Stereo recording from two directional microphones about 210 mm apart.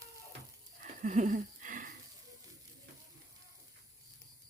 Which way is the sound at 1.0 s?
35° right (ahead or behind).